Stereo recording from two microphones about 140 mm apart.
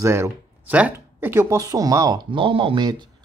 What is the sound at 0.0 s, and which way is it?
Speech, 20° right (ahead or behind).